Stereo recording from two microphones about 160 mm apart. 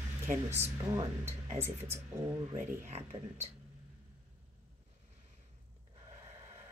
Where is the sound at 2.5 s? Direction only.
40° right (ahead or behind).